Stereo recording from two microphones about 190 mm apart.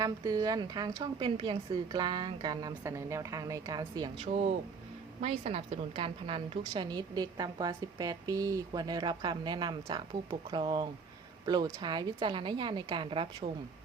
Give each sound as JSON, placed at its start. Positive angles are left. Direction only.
{"t": 0.0, "sound": "a woman's voice", "side_deg": -20}
{"t": 4.2, "sound": "a woman's voice", "side_deg": -35}